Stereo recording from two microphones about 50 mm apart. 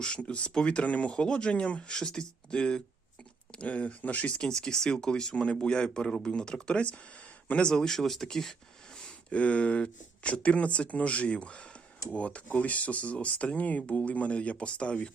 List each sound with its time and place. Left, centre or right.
0.0 s speech: left
4.4 s speech: centre
7.7 s speech: centre
9.0 s speech: left